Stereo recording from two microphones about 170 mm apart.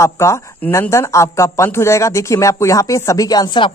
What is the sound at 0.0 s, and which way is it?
Speech, 15° left (ahead or behind).